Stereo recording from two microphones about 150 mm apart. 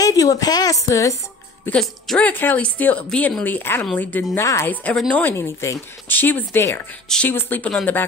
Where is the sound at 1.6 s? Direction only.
5° left (ahead or behind).